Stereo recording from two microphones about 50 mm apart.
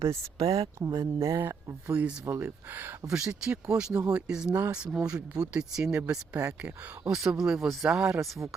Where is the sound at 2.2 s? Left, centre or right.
Right.